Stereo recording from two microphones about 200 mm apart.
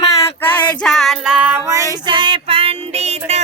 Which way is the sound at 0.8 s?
Centre (ahead or behind).